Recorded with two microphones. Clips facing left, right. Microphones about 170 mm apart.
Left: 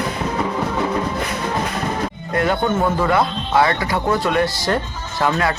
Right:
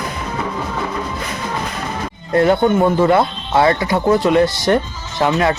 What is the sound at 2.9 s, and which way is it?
Speech, 25° right (ahead or behind).